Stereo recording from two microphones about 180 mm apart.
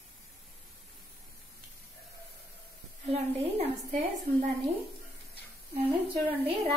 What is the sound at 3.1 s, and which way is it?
A woman's voice, 35° right (ahead or behind).